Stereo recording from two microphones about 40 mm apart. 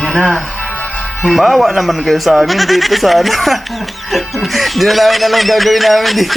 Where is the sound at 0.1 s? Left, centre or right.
Centre.